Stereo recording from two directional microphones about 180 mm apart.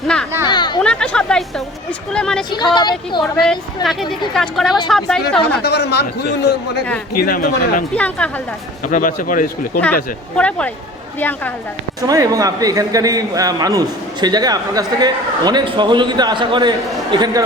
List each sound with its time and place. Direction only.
0.4 s a sound: 25° left (ahead or behind)
0.8 s a sound: 5° left (ahead or behind)
2.7 s a woman's voice: 25° left (ahead or behind)
3.8 s speech: centre (ahead or behind)
5.6 s a man's voice: 65° left (ahead or behind)
7.2 s speech: 50° left (ahead or behind)
7.9 s speech: 10° left (ahead or behind)
8.8 s speech: 45° left (ahead or behind)
9.8 s speech: 10° left (ahead or behind)
12.0 s a man's voice: 20° right (ahead or behind)